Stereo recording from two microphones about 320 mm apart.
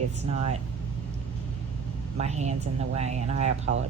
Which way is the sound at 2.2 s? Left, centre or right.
Right.